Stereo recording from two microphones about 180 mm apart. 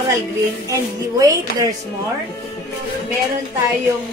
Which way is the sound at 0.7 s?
20° right (ahead or behind).